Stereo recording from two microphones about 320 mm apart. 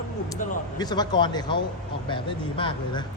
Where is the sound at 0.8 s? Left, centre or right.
Centre.